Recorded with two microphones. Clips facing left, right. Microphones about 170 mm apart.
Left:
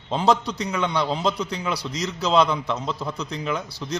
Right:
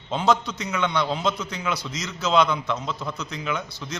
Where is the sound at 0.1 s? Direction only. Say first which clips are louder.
Left 1 dB; 35° left (ahead or behind).